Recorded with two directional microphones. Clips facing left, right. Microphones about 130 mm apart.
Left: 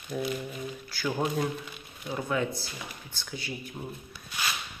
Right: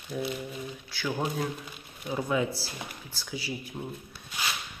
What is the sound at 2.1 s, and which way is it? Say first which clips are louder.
Speech: right 1 dB; 15° right (ahead or behind).